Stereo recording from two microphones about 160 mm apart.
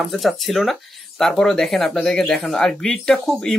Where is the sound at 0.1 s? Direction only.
Centre (ahead or behind).